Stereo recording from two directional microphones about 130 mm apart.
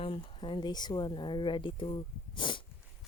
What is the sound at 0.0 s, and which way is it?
Speech, 45° left (ahead or behind).